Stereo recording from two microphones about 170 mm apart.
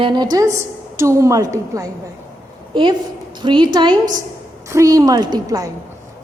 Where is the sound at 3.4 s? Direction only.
25° right (ahead or behind).